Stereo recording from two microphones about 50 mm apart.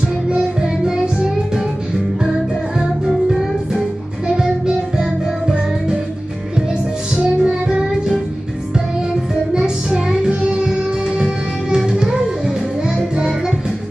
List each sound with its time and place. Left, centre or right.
0.3 s music: centre
7.3 s music: centre
9.5 s music: centre